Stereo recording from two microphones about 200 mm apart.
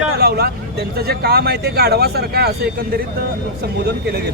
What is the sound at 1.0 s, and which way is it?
Speech, 50° right (ahead or behind).